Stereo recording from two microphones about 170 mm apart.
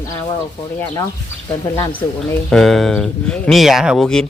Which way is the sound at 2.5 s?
Centre (ahead or behind).